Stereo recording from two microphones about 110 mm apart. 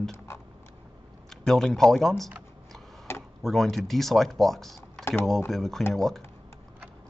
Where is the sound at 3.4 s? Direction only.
Centre (ahead or behind).